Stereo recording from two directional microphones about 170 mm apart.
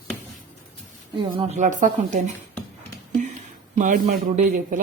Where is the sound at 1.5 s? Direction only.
50° right (ahead or behind).